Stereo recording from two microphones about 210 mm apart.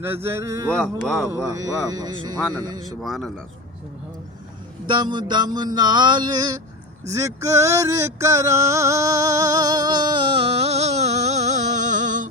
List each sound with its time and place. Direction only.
0.0 s speech: 10° right (ahead or behind)
0.8 s a man's voice: 5° left (ahead or behind)
1.5 s speech: 15° right (ahead or behind)
3.0 s a man's voice: centre (ahead or behind)
4.9 s a sound: 20° right (ahead or behind); by 12.3 s 40° right (ahead or behind)